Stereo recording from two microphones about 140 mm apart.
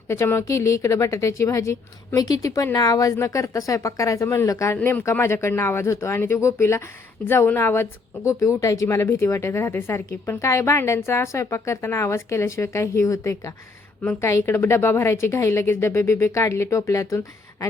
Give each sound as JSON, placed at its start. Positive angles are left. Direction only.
{"t": 0.1, "sound": "a woman's voice", "side_deg": 20}